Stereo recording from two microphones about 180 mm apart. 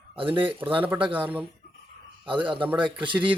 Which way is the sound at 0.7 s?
10° right (ahead or behind).